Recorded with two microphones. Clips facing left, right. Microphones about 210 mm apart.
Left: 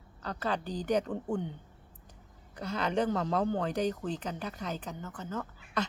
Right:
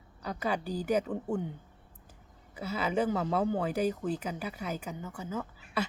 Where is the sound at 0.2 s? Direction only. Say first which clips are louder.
Right 1 dB; 10° right (ahead or behind).